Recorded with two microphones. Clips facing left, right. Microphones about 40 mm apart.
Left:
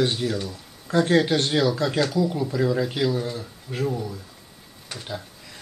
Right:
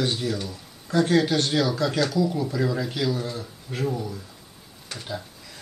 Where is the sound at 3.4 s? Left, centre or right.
Centre.